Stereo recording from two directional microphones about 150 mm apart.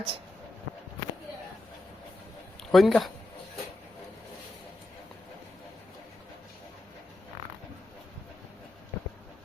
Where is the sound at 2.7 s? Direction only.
Centre (ahead or behind).